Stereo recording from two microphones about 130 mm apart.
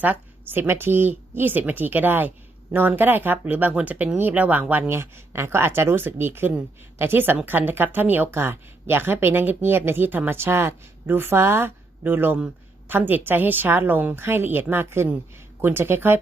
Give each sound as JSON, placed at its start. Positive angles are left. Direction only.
{"t": 0.0, "sound": "speech", "side_deg": -15}